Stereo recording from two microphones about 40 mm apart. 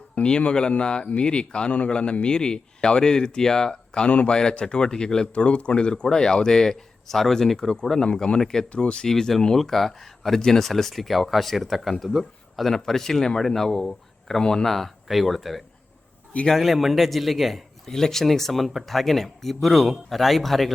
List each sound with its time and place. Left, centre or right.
0.2 s speech: left
4.0 s speech: left
4.6 s speech: centre
5.3 s speech: left; by 8.6 s centre
8.7 s speech: left
9.0 s speech: centre
17.9 s speech: centre